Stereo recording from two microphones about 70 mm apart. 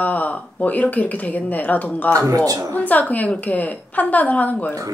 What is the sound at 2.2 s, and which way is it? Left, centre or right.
Speech, right.